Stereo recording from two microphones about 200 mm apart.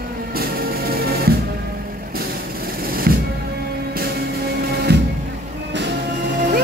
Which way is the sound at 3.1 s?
50° right (ahead or behind).